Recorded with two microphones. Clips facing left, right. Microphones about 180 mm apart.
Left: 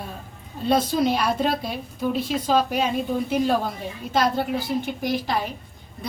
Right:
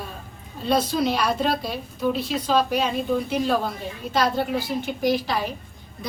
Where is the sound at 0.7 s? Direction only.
50° left (ahead or behind).